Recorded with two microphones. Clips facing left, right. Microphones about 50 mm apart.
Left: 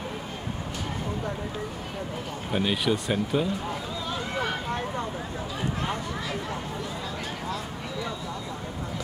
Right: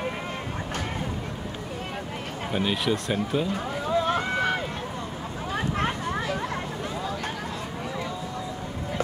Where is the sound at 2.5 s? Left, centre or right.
Centre.